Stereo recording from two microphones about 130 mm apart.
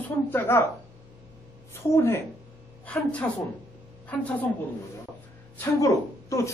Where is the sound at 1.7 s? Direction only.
20° left (ahead or behind).